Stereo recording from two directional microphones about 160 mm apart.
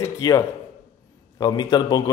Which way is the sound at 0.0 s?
20° left (ahead or behind).